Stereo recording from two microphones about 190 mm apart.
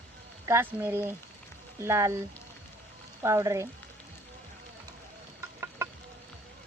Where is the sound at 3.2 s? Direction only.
15° right (ahead or behind).